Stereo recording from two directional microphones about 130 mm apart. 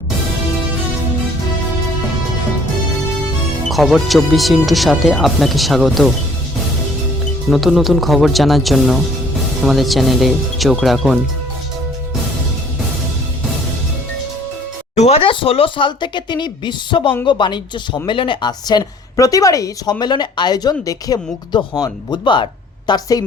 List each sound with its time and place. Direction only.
3.7 s speech: centre (ahead or behind)
7.5 s speech: centre (ahead or behind)
14.9 s speech: 60° left (ahead or behind)
15.2 s a woman's voice: 40° left (ahead or behind)